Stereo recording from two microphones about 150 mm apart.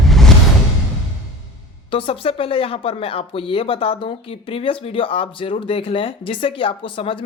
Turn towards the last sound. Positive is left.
turn(degrees=35)  # may be behind; listen again after turning